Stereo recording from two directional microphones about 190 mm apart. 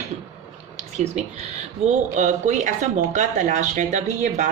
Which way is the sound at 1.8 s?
40° right (ahead or behind).